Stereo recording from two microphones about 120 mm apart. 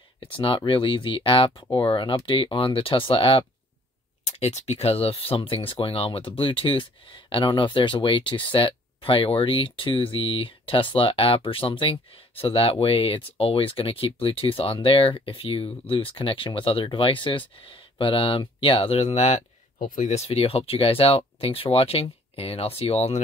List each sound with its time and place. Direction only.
0.2 s speech: 45° left (ahead or behind)
4.2 s speech: 70° left (ahead or behind)